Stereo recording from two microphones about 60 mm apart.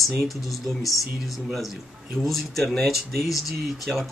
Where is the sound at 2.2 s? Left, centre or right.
Centre.